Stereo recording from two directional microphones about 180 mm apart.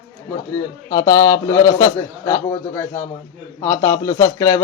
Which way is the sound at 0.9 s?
20° left (ahead or behind).